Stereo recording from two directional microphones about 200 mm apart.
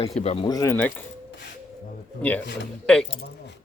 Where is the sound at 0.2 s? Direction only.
30° left (ahead or behind).